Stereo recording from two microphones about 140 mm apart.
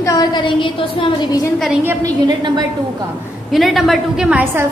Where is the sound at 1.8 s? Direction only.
30° right (ahead or behind).